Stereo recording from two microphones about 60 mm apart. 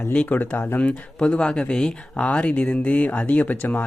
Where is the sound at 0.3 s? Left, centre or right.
Left.